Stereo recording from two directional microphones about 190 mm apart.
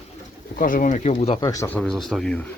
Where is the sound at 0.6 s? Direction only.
45° left (ahead or behind).